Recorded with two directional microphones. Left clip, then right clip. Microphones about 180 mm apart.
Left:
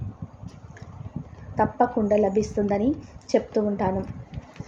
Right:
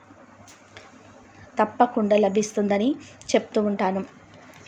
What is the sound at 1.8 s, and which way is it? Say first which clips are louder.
A woman's voice: right 2 dB; 15° right (ahead or behind).